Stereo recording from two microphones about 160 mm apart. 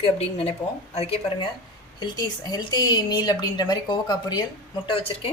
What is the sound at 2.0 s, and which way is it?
A woman's voice, 25° left (ahead or behind).